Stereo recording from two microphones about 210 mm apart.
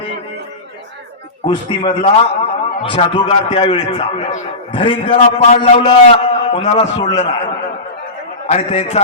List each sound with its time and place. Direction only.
1.5 s a man's voice: 20° left (ahead or behind)
8.4 s a man's voice: 30° left (ahead or behind)